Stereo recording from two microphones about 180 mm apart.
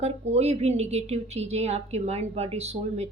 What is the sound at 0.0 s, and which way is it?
A woman's voice, 35° right (ahead or behind).